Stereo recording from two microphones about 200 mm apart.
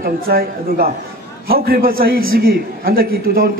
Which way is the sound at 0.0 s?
45° right (ahead or behind).